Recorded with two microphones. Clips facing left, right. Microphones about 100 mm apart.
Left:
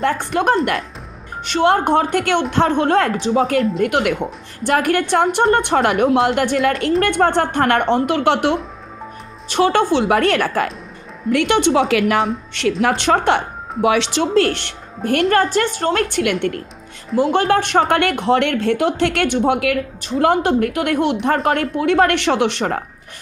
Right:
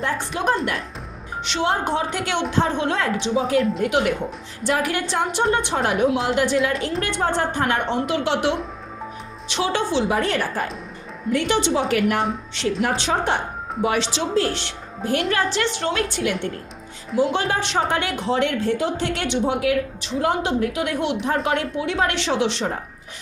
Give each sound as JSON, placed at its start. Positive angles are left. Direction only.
{"t": 0.0, "sound": "speech", "side_deg": 55}
{"t": 6.1, "sound": "a woman's voice", "side_deg": 55}
{"t": 12.6, "sound": "speech", "side_deg": 60}
{"t": 13.8, "sound": "a woman's voice", "side_deg": 85}
{"t": 14.1, "sound": "a woman's voice", "side_deg": 60}
{"t": 15.3, "sound": "a woman's voice", "side_deg": 45}